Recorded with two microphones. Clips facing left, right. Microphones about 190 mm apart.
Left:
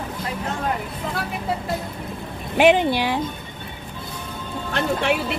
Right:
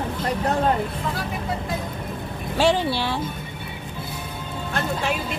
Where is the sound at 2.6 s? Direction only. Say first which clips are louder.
Left 4 dB; 20° left (ahead or behind).